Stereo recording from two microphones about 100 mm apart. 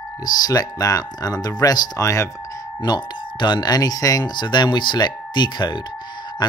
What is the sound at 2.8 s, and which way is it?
Speech, 50° left (ahead or behind).